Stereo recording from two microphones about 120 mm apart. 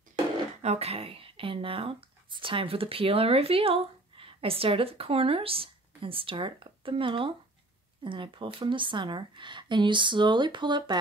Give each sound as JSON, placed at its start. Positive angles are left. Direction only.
{"t": 0.6, "sound": "speech", "side_deg": -60}